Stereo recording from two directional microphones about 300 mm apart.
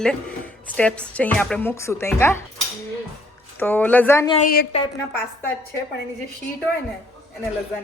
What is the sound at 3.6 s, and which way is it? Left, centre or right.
Speech, centre.